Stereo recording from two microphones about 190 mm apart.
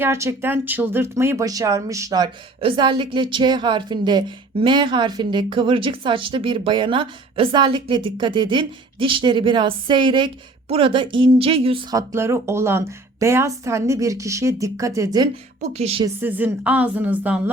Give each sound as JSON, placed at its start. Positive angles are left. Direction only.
{"t": 0.0, "sound": "a woman's voice", "side_deg": -15}
{"t": 15.6, "sound": "a woman's voice", "side_deg": -35}
{"t": 16.0, "sound": "a woman's voice", "side_deg": -10}